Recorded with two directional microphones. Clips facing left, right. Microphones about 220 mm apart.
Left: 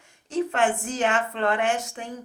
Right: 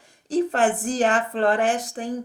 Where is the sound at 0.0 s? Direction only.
35° right (ahead or behind).